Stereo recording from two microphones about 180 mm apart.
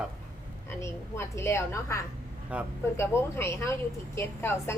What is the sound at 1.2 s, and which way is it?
Speech, 15° left (ahead or behind).